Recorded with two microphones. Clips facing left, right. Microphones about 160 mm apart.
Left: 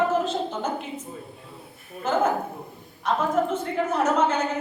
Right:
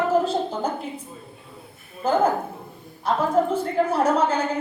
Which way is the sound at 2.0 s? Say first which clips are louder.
Right 3 dB; 35° right (ahead or behind).